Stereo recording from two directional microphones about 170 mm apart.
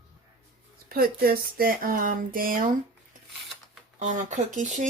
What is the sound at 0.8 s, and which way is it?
Speech, 60° right (ahead or behind).